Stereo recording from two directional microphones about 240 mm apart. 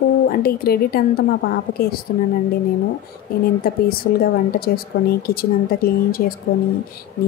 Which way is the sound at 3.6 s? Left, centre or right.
Left.